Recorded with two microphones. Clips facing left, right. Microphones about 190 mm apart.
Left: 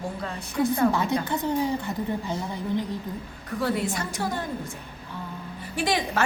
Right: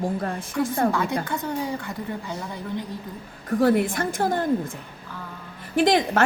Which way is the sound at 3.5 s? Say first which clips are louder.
Right 7 dB; 50° right (ahead or behind).